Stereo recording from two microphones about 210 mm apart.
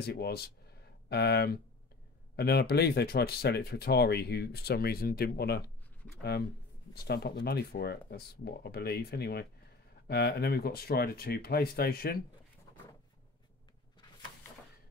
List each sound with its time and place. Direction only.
0.0 s speech: 50° left (ahead or behind)
6.9 s speech: 50° left (ahead or behind)